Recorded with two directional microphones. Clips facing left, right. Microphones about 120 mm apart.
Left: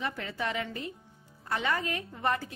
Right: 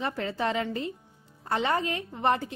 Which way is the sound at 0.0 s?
35° right (ahead or behind).